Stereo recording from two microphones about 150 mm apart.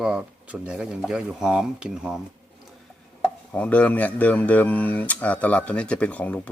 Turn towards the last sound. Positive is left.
turn(degrees=10)  # may be behind; listen again after turning